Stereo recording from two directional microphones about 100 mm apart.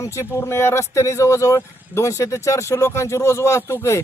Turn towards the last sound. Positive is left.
turn(degrees=25)  # may be behind; listen again after turning